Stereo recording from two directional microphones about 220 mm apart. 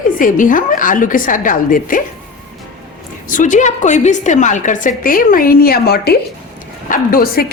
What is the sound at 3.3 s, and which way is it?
A woman's voice, 35° left (ahead or behind).